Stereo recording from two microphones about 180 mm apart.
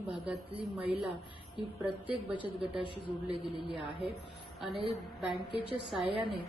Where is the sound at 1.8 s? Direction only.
10° right (ahead or behind).